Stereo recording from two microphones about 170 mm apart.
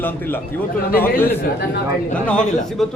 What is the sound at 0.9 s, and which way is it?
Speech, 60° left (ahead or behind).